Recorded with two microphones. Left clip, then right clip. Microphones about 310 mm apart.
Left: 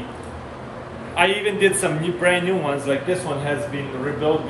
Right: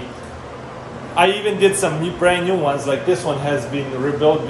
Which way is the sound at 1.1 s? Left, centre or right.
Centre.